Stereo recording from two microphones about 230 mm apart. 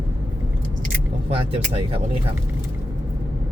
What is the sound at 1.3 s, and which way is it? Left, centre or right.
Speech, right.